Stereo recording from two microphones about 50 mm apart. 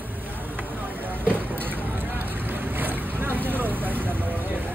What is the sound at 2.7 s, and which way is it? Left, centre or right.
Vehicle, right.